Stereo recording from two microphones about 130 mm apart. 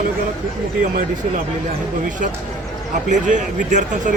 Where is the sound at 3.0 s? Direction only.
70° right (ahead or behind).